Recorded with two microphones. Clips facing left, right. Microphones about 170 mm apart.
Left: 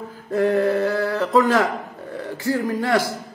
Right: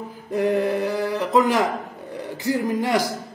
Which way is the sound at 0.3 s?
15° right (ahead or behind).